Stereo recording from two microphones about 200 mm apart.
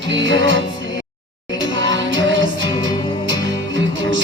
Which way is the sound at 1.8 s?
65° right (ahead or behind).